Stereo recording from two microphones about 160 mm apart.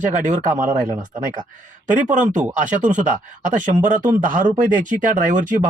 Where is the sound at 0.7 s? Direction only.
60° right (ahead or behind).